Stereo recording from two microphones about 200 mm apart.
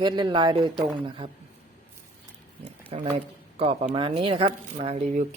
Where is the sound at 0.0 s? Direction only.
20° right (ahead or behind).